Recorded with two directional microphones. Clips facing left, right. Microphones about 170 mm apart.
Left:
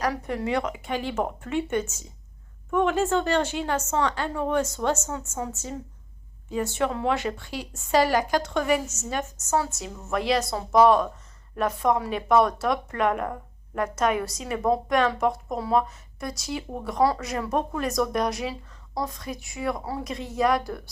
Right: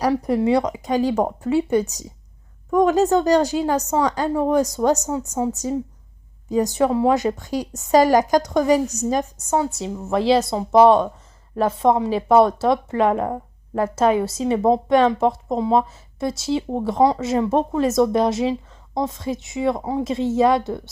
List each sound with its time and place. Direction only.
0.0 s a woman's voice: 35° right (ahead or behind)
6.6 s a woman's voice: 35° right (ahead or behind)